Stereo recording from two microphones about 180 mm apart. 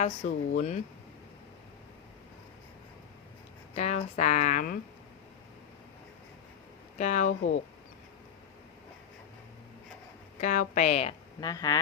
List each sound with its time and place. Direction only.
0.0 s speech: 40° left (ahead or behind)
3.8 s speech: 40° left (ahead or behind)
7.0 s speech: 40° left (ahead or behind)
10.4 s speech: 45° left (ahead or behind)
11.3 s speech: 20° left (ahead or behind)